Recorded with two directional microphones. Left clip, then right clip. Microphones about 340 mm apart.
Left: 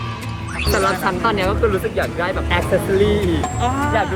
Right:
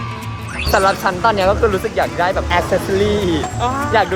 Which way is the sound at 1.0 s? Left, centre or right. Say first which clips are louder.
Right 4 dB; centre.